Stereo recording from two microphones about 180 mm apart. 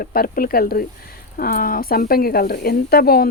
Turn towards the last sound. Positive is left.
turn(degrees=60)  # may be behind; listen again after turning